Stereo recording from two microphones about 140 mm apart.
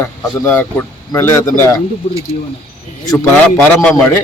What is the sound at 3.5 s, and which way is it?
Speech, 15° left (ahead or behind).